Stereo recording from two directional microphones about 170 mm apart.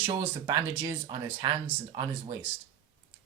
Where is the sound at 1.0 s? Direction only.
25° right (ahead or behind).